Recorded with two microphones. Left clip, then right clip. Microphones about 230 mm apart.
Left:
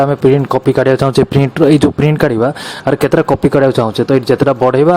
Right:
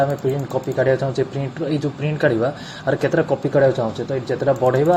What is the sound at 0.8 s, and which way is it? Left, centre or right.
Speech, left.